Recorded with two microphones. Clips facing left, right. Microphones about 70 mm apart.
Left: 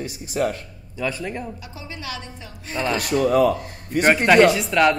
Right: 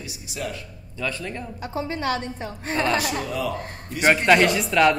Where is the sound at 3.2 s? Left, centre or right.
Left.